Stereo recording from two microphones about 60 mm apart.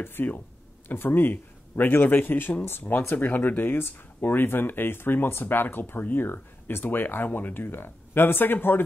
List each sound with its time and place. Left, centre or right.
0.0 s speech: left